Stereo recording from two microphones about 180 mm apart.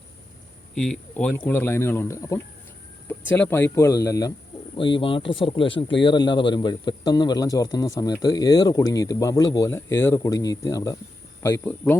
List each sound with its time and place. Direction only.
0.7 s speech: 5° left (ahead or behind)
4.8 s speech: 30° left (ahead or behind); by 11.9 s 10° left (ahead or behind)